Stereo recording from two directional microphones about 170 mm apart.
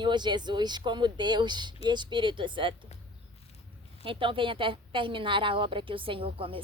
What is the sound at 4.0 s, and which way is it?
A woman's voice, 30° right (ahead or behind).